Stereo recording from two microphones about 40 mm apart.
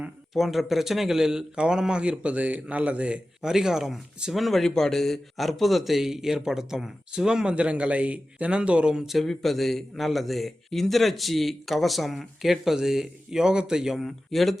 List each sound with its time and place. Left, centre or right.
0.3 s speech: centre
1.5 s a man's voice: right
3.4 s speech: centre
4.3 s a man's voice: centre
4.6 s a man's voice: centre
7.5 s a man's voice: right
9.2 s a man's voice: centre
14.0 s a man's voice: centre